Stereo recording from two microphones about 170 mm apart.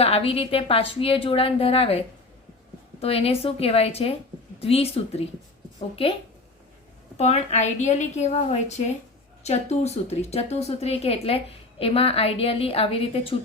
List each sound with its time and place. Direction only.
0.0 s speech: 35° left (ahead or behind)
7.2 s speech: 40° left (ahead or behind)